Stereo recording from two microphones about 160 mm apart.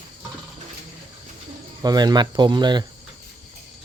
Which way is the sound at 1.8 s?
25° right (ahead or behind).